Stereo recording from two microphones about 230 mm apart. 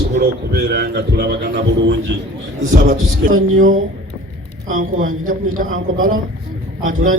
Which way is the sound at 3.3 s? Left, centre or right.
Right.